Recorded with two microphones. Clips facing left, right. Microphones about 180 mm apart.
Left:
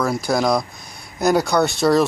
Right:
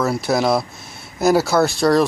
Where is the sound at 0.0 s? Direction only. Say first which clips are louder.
Right 1 dB; 5° right (ahead or behind).